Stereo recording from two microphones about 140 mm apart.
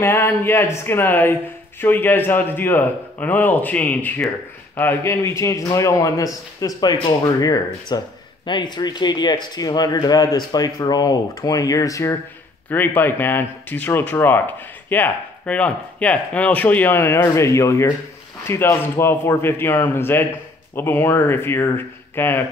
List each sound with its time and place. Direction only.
0.0 s speech: 15° left (ahead or behind)